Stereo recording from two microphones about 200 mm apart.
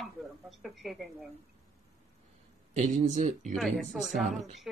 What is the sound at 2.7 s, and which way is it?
Speech, 35° right (ahead or behind).